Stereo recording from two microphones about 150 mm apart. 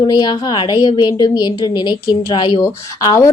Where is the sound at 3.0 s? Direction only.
20° left (ahead or behind).